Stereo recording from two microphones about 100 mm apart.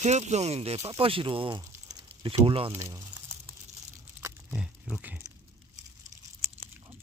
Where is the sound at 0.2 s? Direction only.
90° right.